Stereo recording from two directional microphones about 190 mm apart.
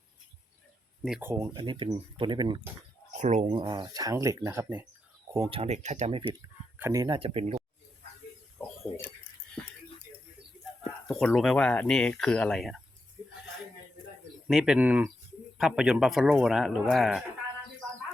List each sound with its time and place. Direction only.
1.0 s speech: 5° right (ahead or behind)
1.3 s speech: 20° right (ahead or behind)
3.2 s speech: 40° right (ahead or behind)
3.5 s speech: 25° right (ahead or behind)
5.5 s speech: 35° right (ahead or behind)
6.7 s speech: 15° right (ahead or behind); by 7.6 s 30° right (ahead or behind)
8.5 s a sound: 5° left (ahead or behind)
11.1 s speech: centre (ahead or behind)
14.4 s speech: 5° right (ahead or behind)